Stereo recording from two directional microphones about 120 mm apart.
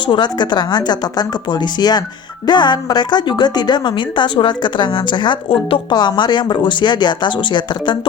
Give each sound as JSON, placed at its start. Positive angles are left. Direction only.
{"t": 0.1, "sound": "a woman's voice", "side_deg": 40}